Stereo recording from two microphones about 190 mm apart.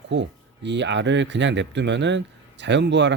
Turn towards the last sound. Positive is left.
turn(degrees=-65)  # may be behind; listen again after turning